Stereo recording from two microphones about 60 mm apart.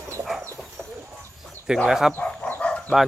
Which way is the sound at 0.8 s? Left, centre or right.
Centre.